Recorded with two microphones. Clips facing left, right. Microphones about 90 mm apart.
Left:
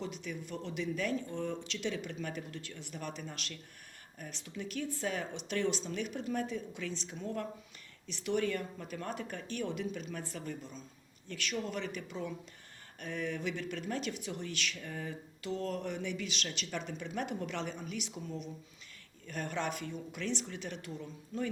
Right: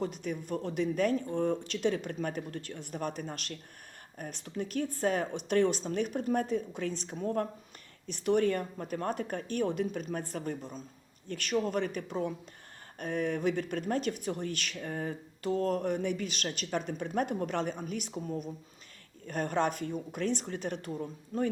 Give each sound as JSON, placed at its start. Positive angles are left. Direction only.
{"t": 0.0, "sound": "speech", "side_deg": -50}